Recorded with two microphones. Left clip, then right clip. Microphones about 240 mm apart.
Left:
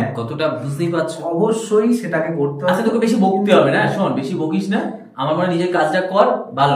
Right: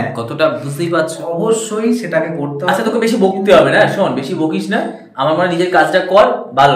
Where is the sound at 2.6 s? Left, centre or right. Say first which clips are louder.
Right 4 dB; centre.